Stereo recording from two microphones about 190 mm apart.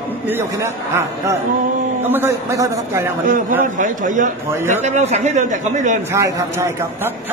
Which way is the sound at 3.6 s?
40° right (ahead or behind).